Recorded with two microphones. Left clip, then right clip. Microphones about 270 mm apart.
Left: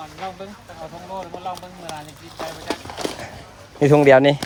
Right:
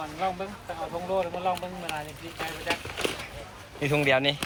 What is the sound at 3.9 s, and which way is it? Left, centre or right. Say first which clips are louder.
Speech: left 12 dB; left.